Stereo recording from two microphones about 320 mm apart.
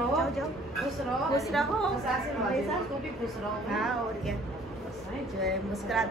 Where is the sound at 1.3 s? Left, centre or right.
Centre.